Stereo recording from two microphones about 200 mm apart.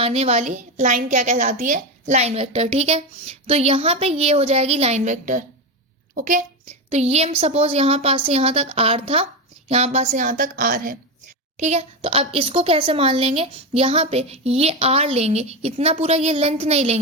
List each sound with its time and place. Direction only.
0.0 s a woman's voice: 30° right (ahead or behind)
11.5 s a woman's voice: 35° right (ahead or behind)